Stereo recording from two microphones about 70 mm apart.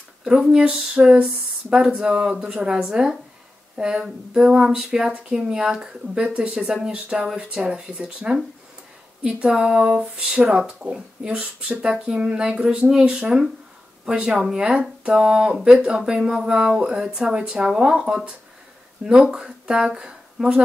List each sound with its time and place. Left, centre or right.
0.2 s speech: centre